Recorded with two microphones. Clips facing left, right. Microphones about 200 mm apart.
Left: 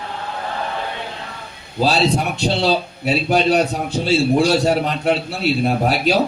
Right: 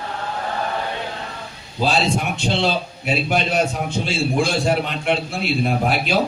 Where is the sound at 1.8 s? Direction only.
35° left (ahead or behind).